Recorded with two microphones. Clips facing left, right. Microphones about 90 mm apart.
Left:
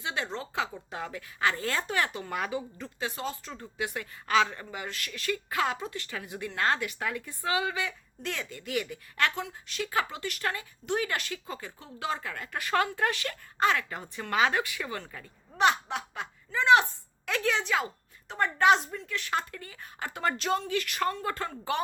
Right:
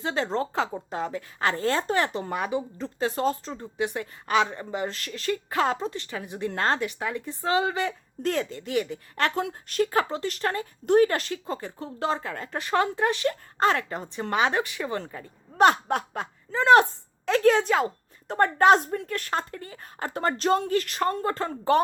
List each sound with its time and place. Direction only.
0.0 s a woman's voice: 35° right (ahead or behind)
3.5 s a woman's voice: 25° right (ahead or behind)
13.6 s a woman's voice: 35° right (ahead or behind)
15.5 s a woman's voice: 45° right (ahead or behind)